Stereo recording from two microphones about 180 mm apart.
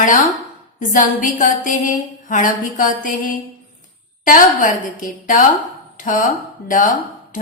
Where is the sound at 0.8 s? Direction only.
45° left (ahead or behind).